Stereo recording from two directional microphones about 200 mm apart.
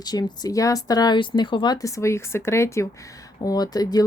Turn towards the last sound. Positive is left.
turn(degrees=20)  # may be behind; listen again after turning